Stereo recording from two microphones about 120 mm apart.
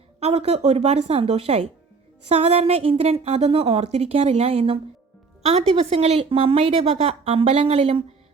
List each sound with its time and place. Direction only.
0.2 s a woman's voice: 55° right (ahead or behind)